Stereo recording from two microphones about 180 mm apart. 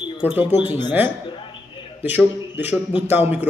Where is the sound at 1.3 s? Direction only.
25° left (ahead or behind).